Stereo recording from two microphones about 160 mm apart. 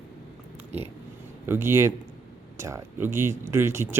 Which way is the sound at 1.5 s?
15° right (ahead or behind).